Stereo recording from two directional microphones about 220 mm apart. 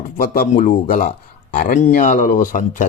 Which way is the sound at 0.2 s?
35° left (ahead or behind).